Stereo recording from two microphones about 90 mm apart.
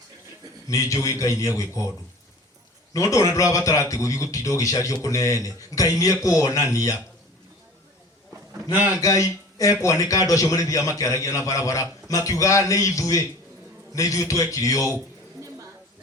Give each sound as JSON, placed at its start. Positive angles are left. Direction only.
{"t": 0.7, "sound": "a man's voice", "side_deg": 35}
{"t": 2.9, "sound": "a man's voice", "side_deg": 35}
{"t": 9.0, "sound": "a man's voice", "side_deg": 35}